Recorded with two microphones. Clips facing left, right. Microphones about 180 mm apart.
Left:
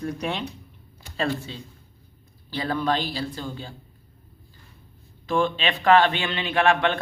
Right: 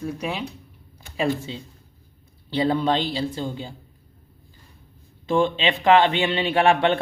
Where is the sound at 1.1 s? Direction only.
20° right (ahead or behind).